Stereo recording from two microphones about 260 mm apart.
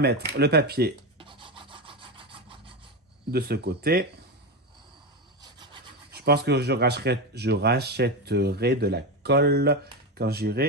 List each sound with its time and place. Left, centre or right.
0.3 s speech: right
1.1 s rub: centre
3.3 s speech: right
5.4 s sawing: centre
6.1 s speech: right